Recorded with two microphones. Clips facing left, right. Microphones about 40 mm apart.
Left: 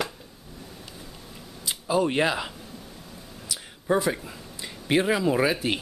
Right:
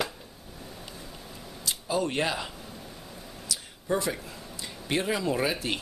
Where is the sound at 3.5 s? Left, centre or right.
Centre.